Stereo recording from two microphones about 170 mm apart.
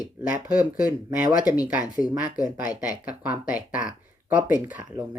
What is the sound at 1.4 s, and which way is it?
Speech, 20° left (ahead or behind).